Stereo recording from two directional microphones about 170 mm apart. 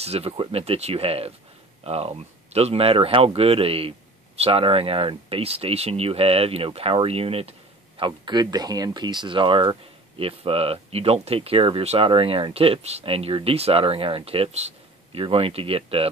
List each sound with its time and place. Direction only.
0.0 s speech: 35° right (ahead or behind)
8.0 s speech: 25° right (ahead or behind)